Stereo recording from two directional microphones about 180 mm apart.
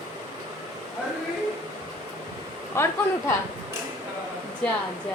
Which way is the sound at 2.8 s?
15° left (ahead or behind).